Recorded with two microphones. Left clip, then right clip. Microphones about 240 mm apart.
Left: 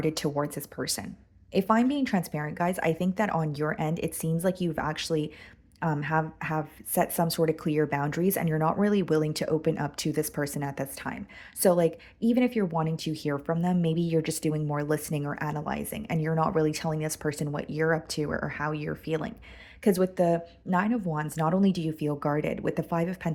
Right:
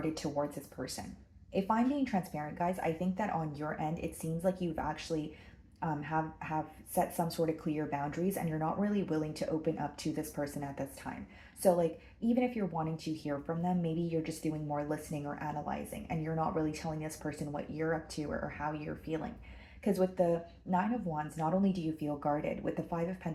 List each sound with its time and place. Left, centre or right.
0.0 s speech: left